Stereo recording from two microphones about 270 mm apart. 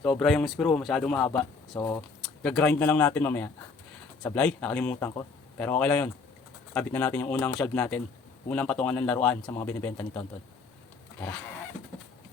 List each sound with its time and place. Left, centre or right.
0.0 s speech: centre